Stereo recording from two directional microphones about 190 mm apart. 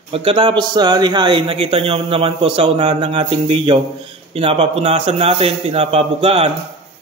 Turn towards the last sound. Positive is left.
turn(degrees=-30)  # may be behind; listen again after turning